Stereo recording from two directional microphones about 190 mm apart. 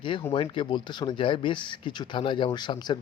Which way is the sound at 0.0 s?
25° left (ahead or behind).